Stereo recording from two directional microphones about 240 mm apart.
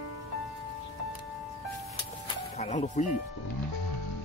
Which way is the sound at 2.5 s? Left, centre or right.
Left.